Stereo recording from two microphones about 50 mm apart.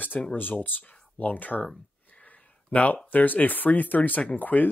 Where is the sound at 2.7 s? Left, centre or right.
Left.